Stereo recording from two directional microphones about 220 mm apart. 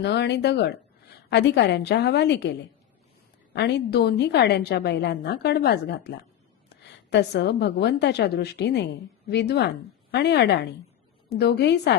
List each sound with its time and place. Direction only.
0.0 s a woman's voice: 50° left (ahead or behind)